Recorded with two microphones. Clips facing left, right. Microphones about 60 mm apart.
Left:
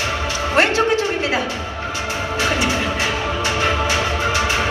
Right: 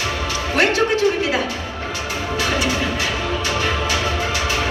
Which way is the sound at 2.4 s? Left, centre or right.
Left.